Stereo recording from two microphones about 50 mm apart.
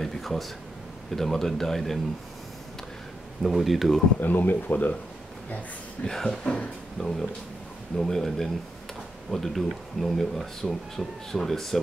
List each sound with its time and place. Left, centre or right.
0.0 s a sound: centre
1.1 s speech: centre
3.4 s speech: centre
4.2 s speech: left
6.0 s speech: centre